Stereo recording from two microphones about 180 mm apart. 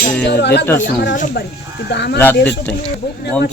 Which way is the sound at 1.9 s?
70° left (ahead or behind).